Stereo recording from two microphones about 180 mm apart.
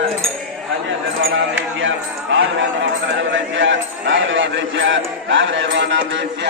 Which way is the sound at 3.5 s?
90° right.